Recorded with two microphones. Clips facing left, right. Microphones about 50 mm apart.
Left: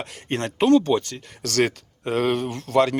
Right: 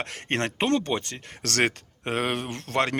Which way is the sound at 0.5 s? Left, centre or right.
Right.